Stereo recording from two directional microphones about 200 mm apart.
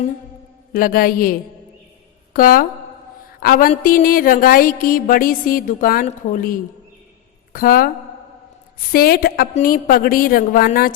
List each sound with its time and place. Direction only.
0.7 s music: 45° left (ahead or behind)
8.9 s music: 50° left (ahead or behind)